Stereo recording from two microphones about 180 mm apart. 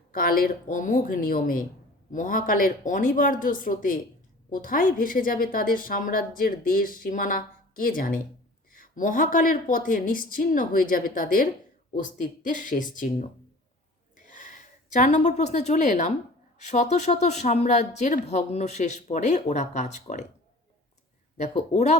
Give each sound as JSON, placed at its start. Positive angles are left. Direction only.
{"t": 0.1, "sound": "a woman's voice", "side_deg": 55}
{"t": 21.3, "sound": "speech", "side_deg": 40}